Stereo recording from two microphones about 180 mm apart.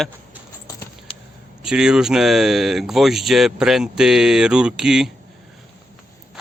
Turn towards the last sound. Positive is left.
turn(degrees=-5)  # may be behind; listen again after turning